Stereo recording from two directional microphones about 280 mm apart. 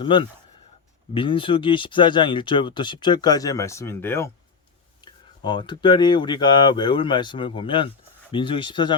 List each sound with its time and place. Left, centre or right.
0.0 s speech: centre
5.4 s speech: centre